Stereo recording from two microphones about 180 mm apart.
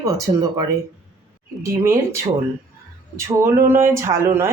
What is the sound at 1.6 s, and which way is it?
Speech, 15° right (ahead or behind).